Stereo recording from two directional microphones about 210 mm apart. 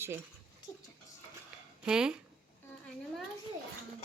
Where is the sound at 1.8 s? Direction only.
5° right (ahead or behind).